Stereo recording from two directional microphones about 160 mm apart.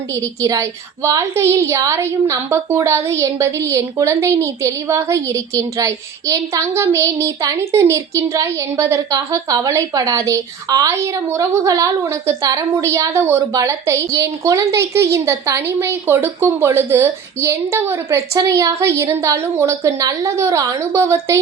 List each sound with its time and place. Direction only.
0.1 s a woman's voice: 20° right (ahead or behind)